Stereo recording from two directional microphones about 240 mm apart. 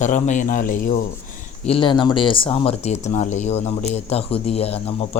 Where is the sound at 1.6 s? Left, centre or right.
Left.